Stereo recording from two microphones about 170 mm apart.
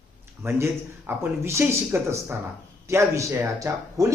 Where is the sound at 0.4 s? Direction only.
15° right (ahead or behind).